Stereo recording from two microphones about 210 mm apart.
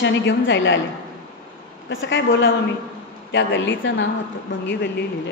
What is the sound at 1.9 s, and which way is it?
A woman's voice, 65° left (ahead or behind).